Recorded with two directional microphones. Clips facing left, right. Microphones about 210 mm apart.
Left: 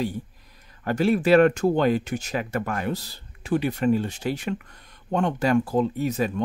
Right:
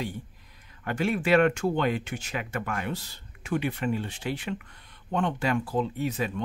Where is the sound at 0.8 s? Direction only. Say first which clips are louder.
Left 6 dB; 40° left (ahead or behind).